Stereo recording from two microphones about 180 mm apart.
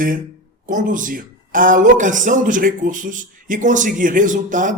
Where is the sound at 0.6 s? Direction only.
45° right (ahead or behind).